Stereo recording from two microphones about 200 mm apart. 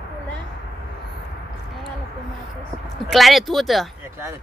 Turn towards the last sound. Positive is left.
turn(degrees=-15)  # may be behind; listen again after turning